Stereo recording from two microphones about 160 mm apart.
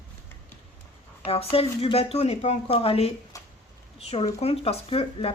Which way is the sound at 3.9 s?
40° left (ahead or behind).